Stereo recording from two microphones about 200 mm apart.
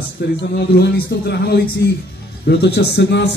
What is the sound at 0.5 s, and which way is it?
Speech, 55° left (ahead or behind).